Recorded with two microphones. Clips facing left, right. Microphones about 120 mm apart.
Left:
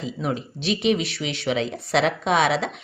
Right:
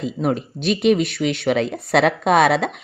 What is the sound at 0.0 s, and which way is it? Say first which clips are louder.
Speech: right 5 dB; 50° right (ahead or behind).